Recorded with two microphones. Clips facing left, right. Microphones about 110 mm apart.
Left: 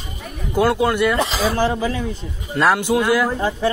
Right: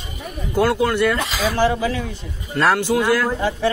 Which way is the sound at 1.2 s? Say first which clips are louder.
Even; 30° left (ahead or behind).